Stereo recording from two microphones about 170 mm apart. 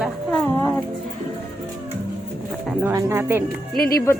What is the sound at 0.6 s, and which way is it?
Speech, 10° left (ahead or behind).